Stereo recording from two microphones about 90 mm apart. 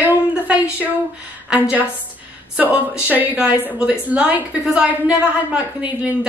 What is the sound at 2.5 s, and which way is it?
A woman's voice, 20° right (ahead or behind).